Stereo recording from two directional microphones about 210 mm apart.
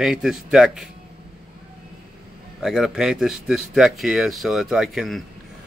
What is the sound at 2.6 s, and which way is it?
Speech, centre (ahead or behind).